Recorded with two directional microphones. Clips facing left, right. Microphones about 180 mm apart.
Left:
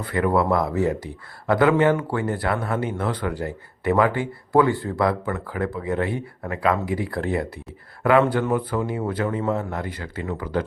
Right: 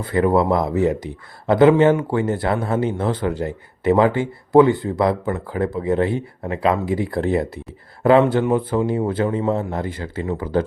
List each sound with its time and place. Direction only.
0.0 s speech: 25° right (ahead or behind)